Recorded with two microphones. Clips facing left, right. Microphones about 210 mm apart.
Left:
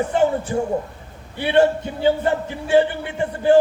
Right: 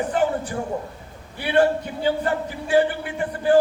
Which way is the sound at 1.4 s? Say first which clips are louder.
Left 2 dB; 25° left (ahead or behind).